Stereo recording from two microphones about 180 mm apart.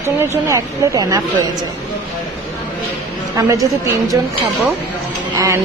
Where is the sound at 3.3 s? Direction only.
20° right (ahead or behind).